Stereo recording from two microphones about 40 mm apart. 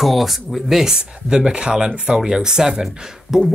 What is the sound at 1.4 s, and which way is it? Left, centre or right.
Speech, right.